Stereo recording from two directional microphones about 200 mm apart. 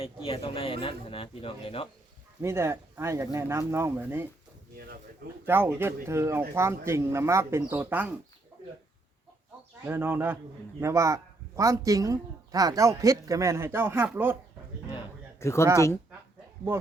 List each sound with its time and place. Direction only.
0.0 s speech: 25° left (ahead or behind)
2.4 s speech: 15° right (ahead or behind)
5.5 s speech: 10° right (ahead or behind)
9.8 s speech: 10° right (ahead or behind)
15.4 s speech: 15° left (ahead or behind)